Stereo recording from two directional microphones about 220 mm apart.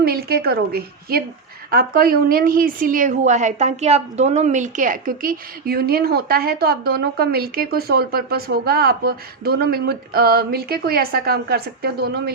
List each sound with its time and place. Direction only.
0.0 s a woman's voice: 45° right (ahead or behind)